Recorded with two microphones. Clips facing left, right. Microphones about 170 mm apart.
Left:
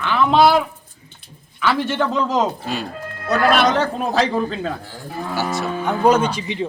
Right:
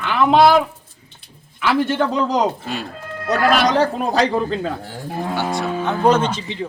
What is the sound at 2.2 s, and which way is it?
Speech, centre (ahead or behind).